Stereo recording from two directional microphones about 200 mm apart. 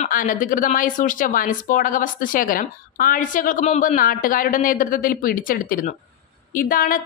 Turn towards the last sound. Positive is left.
turn(degrees=45)  # may be behind; listen again after turning